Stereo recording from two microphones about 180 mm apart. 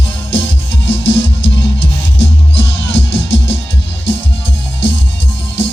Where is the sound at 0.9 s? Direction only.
85° left.